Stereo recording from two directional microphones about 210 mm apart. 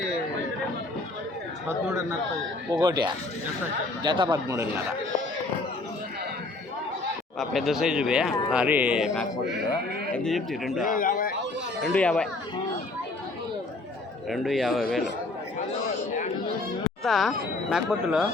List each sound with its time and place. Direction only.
1.6 s speech: 10° right (ahead or behind)
7.3 s speech: centre (ahead or behind)
10.9 s a sound: 40° left (ahead or behind)
11.9 s speech: 5° left (ahead or behind)
14.3 s speech: centre (ahead or behind)
17.0 s speech: centre (ahead or behind)